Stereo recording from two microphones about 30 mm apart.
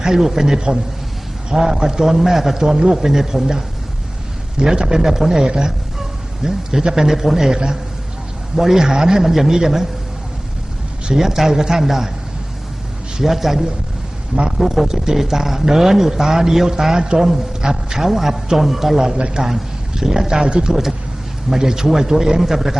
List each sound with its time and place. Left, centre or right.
0.0 s a man's voice: centre
4.5 s a man's voice: right
5.4 s a man's voice: right
8.9 s a man's voice: right
11.2 s a man's voice: centre
13.2 s a man's voice: centre
14.6 s a man's voice: centre
16.9 s a man's voice: right
17.2 s a man's voice: centre
18.9 s a man's voice: right
21.5 s a man's voice: centre